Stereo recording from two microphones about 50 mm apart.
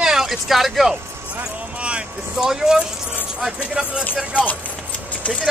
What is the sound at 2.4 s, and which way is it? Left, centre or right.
Speech, centre.